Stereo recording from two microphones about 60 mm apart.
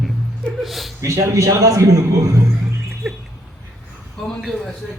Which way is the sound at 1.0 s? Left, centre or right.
Right.